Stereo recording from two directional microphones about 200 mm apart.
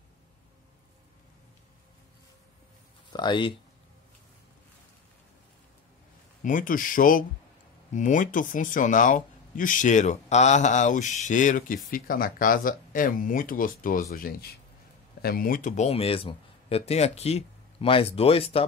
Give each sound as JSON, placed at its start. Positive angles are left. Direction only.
{"t": 3.1, "sound": "speech", "side_deg": 20}
{"t": 6.4, "sound": "speech", "side_deg": 40}